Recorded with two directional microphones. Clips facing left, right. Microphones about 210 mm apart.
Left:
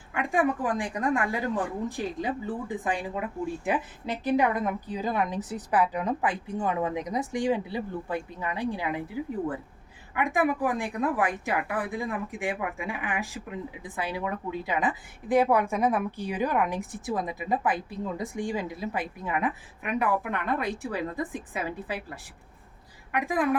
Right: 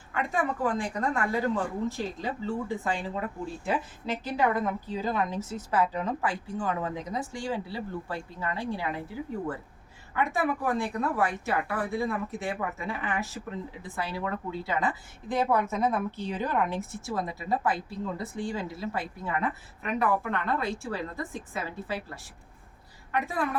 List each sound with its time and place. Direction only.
0.1 s speech: 15° left (ahead or behind)
10.2 s speech: 15° left (ahead or behind)